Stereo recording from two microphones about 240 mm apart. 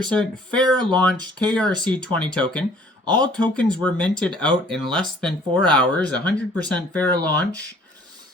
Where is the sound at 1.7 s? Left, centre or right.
Centre.